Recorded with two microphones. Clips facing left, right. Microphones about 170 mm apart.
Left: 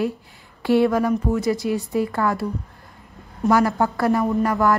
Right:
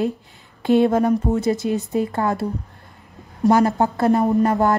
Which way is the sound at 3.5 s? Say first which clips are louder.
Right 2 dB; 20° right (ahead or behind).